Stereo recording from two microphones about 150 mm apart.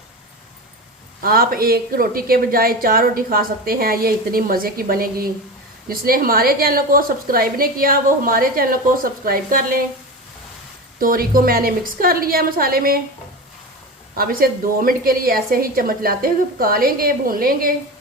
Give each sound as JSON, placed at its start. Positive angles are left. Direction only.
{"t": 1.2, "sound": "a woman's voice", "side_deg": -80}
{"t": 11.0, "sound": "a woman's voice", "side_deg": -70}
{"t": 14.2, "sound": "a woman's voice", "side_deg": -75}